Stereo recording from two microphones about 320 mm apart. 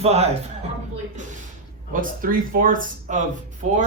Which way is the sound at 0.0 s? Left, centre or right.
Centre.